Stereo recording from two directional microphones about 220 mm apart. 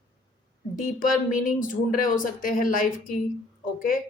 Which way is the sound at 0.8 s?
35° left (ahead or behind).